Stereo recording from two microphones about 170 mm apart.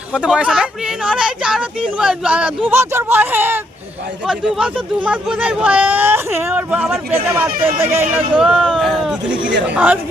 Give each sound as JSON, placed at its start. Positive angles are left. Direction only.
{"t": 0.1, "sound": "speech", "side_deg": -5}
{"t": 8.4, "sound": "speech", "side_deg": -5}